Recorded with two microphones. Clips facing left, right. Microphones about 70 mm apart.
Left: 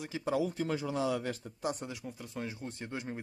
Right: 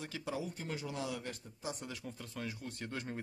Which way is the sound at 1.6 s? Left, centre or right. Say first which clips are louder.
Left 7 dB; left.